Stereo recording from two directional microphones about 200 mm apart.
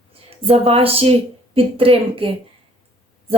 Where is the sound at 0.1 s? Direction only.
30° right (ahead or behind).